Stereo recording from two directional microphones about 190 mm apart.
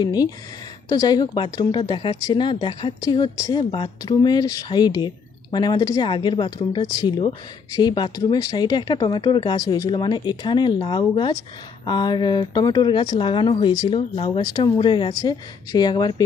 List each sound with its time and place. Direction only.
0.0 s speech: 20° left (ahead or behind)